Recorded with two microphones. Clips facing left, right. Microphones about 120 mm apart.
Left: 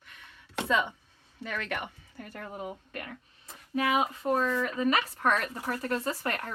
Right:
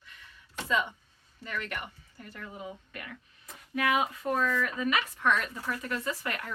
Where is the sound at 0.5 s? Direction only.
75° left (ahead or behind).